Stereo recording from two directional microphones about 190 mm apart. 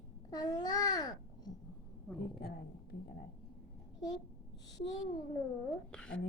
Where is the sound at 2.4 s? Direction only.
55° left (ahead or behind).